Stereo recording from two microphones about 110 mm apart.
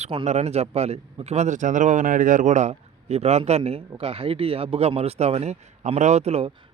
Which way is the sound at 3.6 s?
60° right (ahead or behind).